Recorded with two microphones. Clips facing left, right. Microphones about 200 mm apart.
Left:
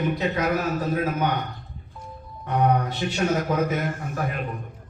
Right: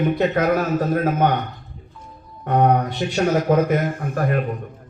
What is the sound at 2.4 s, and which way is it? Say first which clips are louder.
A man's voice: right 5 dB; 55° right (ahead or behind).